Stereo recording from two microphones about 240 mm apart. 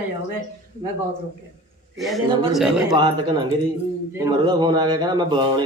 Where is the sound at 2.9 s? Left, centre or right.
Centre.